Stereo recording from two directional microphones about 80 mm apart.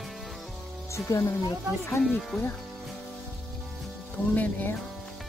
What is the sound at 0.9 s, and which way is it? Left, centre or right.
Speech, left.